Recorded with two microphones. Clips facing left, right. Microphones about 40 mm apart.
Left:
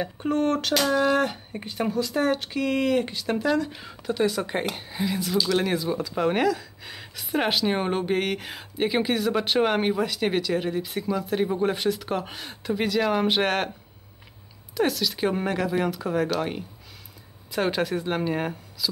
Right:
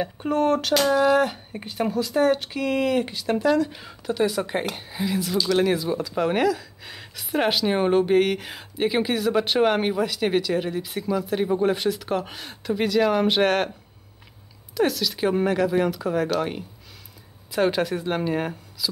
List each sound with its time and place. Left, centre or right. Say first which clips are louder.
0.0 s speech: right 2 dB; centre
14.7 s speech: right 2 dB; centre